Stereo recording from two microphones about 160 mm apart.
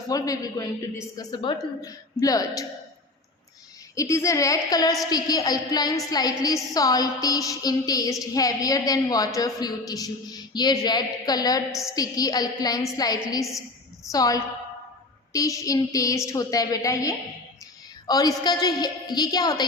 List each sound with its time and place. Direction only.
0.1 s a woman's voice: 25° left (ahead or behind)
3.9 s a woman's voice: 20° left (ahead or behind)
11.7 s a woman's voice: centre (ahead or behind)
11.9 s a woman's voice: 25° left (ahead or behind)
13.5 s a sound: centre (ahead or behind)
14.1 s a woman's voice: 20° left (ahead or behind)